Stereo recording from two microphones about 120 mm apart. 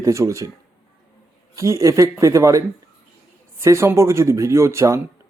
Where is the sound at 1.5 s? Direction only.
25° right (ahead or behind).